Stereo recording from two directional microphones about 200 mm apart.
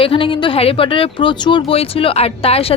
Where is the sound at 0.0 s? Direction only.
25° left (ahead or behind).